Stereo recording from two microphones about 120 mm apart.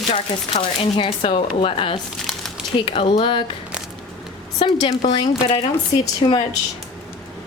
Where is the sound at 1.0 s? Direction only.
50° left (ahead or behind).